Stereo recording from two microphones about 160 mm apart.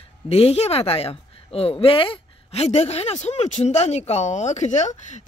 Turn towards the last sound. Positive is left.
turn(degrees=45)  # may be behind; listen again after turning